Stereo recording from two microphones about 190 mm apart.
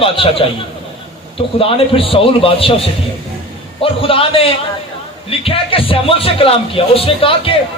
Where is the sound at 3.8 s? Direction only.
30° left (ahead or behind).